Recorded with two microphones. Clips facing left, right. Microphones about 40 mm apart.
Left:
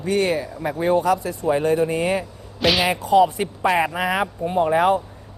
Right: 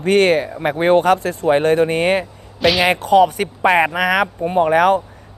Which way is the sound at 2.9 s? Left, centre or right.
Right.